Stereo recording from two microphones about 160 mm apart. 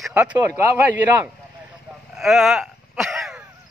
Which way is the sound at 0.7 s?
10° right (ahead or behind).